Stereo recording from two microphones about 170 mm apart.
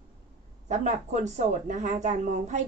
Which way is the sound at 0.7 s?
45° right (ahead or behind).